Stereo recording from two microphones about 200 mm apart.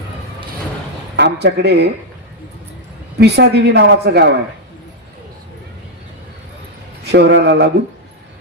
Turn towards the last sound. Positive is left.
turn(degrees=-60)  # may be behind; listen again after turning